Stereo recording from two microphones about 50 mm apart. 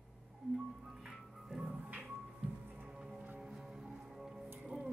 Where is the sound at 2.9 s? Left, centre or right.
Centre.